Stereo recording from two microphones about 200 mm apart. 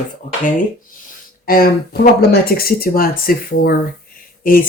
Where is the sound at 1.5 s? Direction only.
45° left (ahead or behind).